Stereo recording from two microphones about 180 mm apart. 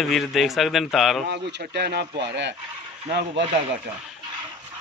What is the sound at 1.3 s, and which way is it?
Speech, 70° right (ahead or behind).